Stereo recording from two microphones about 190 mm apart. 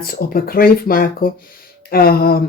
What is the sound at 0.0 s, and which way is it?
Speech, 50° left (ahead or behind).